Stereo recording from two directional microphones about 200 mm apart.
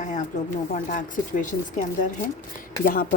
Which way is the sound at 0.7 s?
40° left (ahead or behind).